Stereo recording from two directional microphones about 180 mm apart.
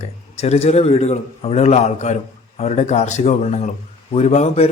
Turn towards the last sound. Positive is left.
turn(degrees=35)  # may be behind; listen again after turning